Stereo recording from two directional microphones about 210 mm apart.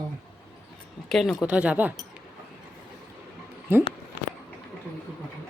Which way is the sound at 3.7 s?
10° right (ahead or behind).